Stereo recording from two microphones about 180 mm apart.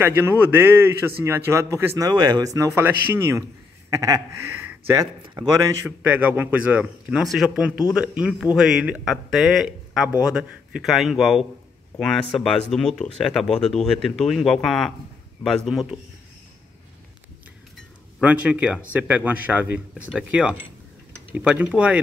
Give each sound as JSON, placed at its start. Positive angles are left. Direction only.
{"t": 0.0, "sound": "a man's voice", "side_deg": -10}
{"t": 5.6, "sound": "a man's voice", "side_deg": -10}
{"t": 18.2, "sound": "a man's voice", "side_deg": -5}